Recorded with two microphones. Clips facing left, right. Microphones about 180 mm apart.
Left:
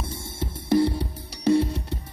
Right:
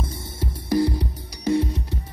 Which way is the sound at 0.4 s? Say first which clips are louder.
Left 1 dB; 25° left (ahead or behind).